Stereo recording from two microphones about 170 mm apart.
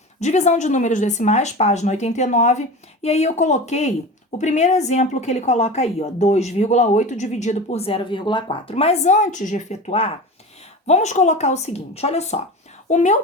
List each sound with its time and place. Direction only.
0.2 s a woman's voice: 45° left (ahead or behind)